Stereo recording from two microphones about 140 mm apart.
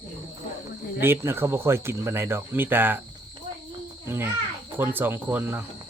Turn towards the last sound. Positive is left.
turn(degrees=-15)  # may be behind; listen again after turning